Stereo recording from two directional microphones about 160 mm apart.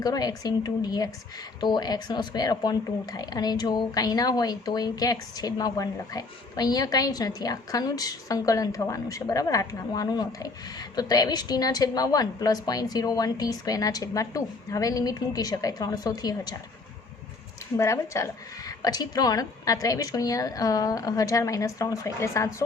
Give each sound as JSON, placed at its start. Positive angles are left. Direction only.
{"t": 0.0, "sound": "speech", "side_deg": 25}
{"t": 17.7, "sound": "speech", "side_deg": 20}